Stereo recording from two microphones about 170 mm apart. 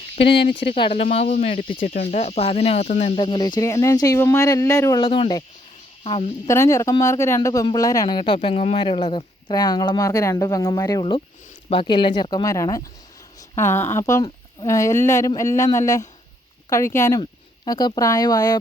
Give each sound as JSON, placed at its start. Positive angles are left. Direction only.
{"t": 0.3, "sound": "speech", "side_deg": 80}
{"t": 0.7, "sound": "speech", "side_deg": 35}
{"t": 1.8, "sound": "speech", "side_deg": 55}
{"t": 2.1, "sound": "speech", "side_deg": 40}
{"t": 3.2, "sound": "speech", "side_deg": 25}
{"t": 5.0, "sound": "speech", "side_deg": 30}
{"t": 6.5, "sound": "speech", "side_deg": 15}
{"t": 11.7, "sound": "speech", "side_deg": 30}